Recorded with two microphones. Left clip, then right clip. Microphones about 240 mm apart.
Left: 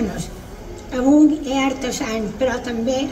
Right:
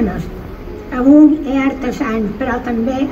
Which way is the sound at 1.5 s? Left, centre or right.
Left.